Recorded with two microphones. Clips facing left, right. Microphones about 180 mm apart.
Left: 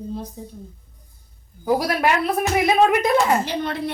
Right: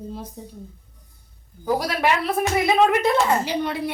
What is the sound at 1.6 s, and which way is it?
Speech, 10° left (ahead or behind).